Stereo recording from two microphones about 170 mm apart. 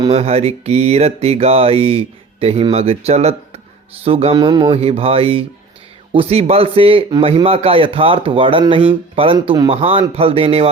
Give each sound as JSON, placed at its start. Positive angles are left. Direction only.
{"t": 0.1, "sound": "music", "side_deg": -35}